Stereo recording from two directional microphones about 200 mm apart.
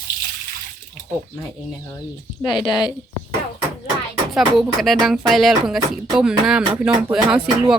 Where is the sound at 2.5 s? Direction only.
25° left (ahead or behind).